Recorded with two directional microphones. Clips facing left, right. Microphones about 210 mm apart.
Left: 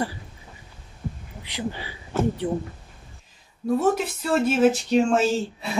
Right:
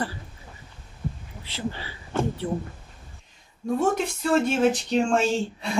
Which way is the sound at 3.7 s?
5° left (ahead or behind).